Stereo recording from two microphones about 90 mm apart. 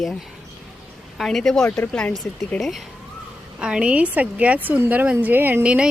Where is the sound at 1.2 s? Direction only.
5° left (ahead or behind).